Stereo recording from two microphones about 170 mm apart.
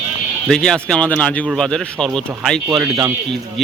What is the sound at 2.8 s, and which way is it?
Speech, 20° right (ahead or behind).